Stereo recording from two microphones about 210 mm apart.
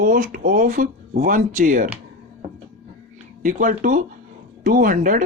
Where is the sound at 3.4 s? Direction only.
40° right (ahead or behind).